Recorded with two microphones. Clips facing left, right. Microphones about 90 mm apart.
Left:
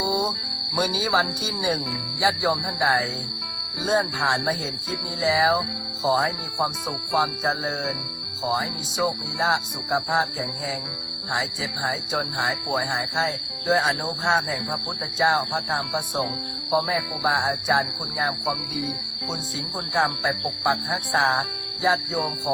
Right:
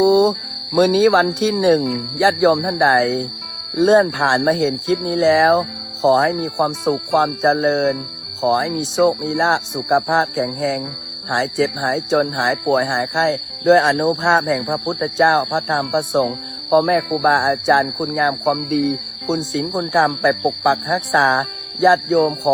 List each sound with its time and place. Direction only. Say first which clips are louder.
0.0 s speech: right 12 dB; 60° right (ahead or behind); by 22.5 s 80° right